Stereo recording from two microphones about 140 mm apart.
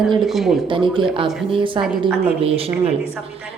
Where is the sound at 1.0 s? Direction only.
35° right (ahead or behind).